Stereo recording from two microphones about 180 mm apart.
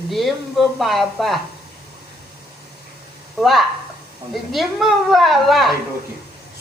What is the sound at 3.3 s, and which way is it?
Speech, centre (ahead or behind).